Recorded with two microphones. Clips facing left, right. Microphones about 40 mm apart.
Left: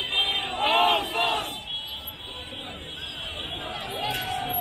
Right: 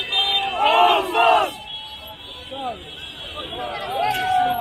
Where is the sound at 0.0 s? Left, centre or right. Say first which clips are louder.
Right 5 dB; right.